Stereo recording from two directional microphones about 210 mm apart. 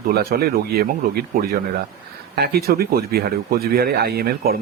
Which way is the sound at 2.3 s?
50° right (ahead or behind).